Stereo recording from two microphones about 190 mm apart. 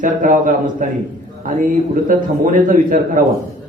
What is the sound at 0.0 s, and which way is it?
Speech, 45° right (ahead or behind).